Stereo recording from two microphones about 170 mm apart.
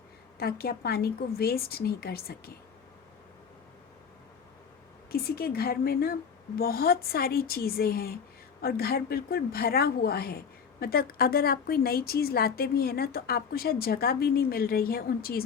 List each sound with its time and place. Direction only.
0.3 s a woman's voice: 65° left (ahead or behind)
5.1 s a woman's voice: 65° left (ahead or behind)